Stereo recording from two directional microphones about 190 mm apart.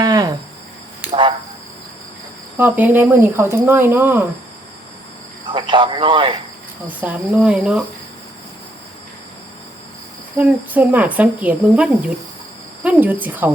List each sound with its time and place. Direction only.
0.0 s cricket: 20° right (ahead or behind)
2.6 s speech: 10° right (ahead or behind)
5.5 s a man's voice: 25° right (ahead or behind)
6.8 s speech: 10° right (ahead or behind)
10.3 s speech: 10° right (ahead or behind)